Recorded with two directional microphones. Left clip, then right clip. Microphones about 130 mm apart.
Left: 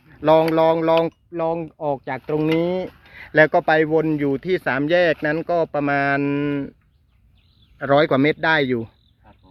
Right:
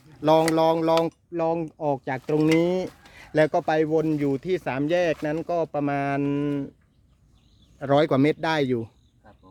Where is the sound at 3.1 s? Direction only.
25° right (ahead or behind).